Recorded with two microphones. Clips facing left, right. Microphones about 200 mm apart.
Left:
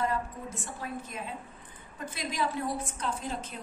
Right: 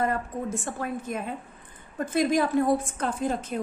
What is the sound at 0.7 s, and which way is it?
A woman's voice, 55° right (ahead or behind).